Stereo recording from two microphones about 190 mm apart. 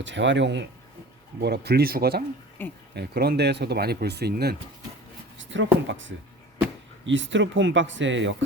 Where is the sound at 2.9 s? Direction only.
55° right (ahead or behind).